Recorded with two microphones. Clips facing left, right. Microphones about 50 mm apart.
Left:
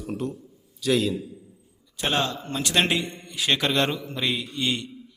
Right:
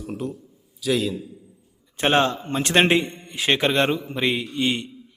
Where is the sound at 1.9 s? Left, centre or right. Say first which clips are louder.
Right 6 dB; right.